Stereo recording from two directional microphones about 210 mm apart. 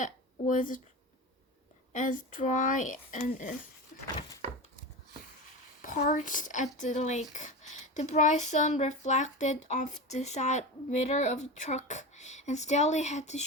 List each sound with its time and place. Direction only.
0.0 s a woman's voice: 40° left (ahead or behind)
1.9 s speech: 40° left (ahead or behind)
5.8 s speech: 40° left (ahead or behind)